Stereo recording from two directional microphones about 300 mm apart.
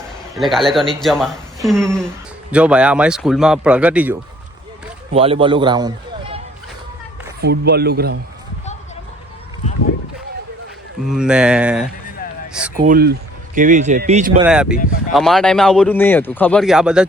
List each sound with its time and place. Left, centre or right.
0.3 s speech: centre
5.1 s a man's voice: centre
7.4 s a man's voice: right
11.1 s speech: centre
12.7 s speech: right
14.4 s speech: centre